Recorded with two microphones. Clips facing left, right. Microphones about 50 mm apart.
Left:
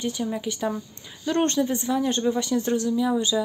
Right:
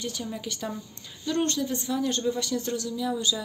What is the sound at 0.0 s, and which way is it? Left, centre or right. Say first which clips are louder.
A woman's voice: left 6 dB; left.